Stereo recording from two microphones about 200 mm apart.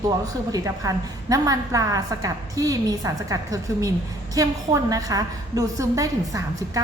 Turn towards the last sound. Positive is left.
turn(degrees=-15)  # may be behind; listen again after turning